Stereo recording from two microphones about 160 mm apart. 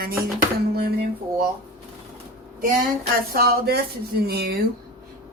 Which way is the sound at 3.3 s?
75° right (ahead or behind).